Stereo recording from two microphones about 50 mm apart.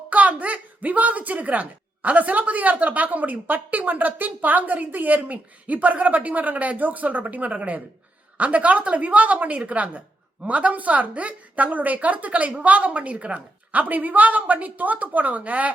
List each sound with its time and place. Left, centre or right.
0.1 s a woman's voice: right